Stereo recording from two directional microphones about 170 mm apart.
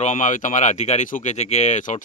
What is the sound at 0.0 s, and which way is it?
Speech, 45° left (ahead or behind).